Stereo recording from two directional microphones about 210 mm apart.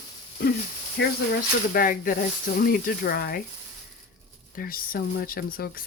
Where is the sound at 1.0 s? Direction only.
50° left (ahead or behind).